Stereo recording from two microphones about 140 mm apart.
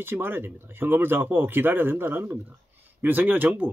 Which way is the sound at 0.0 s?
15° right (ahead or behind).